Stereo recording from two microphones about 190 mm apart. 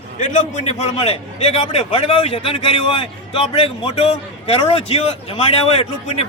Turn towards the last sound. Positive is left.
turn(degrees=30)  # may be behind; listen again after turning